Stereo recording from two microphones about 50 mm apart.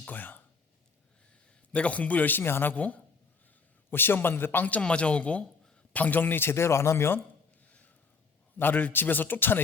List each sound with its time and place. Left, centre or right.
0.0 s a sound: left
1.7 s speech: left
2.4 s speech: left
2.7 s speech: left
3.8 s speech: left
4.8 s speech: left
8.6 s speech: left